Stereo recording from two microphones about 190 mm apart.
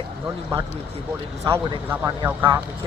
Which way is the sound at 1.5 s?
25° right (ahead or behind).